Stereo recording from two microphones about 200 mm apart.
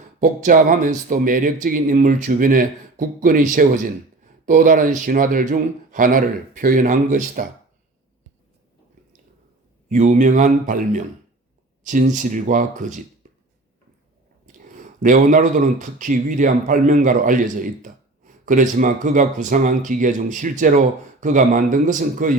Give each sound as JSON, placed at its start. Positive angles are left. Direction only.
{"t": 0.2, "sound": "speech", "side_deg": -40}
{"t": 9.9, "sound": "speech", "side_deg": -40}
{"t": 15.0, "sound": "speech", "side_deg": -40}